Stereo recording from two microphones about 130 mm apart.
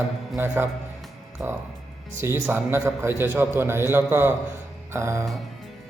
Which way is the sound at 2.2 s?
15° right (ahead or behind).